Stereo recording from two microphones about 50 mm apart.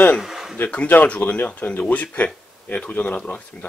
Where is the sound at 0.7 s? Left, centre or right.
Left.